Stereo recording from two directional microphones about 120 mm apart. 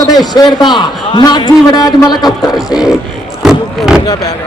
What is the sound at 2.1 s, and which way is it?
Music, centre (ahead or behind).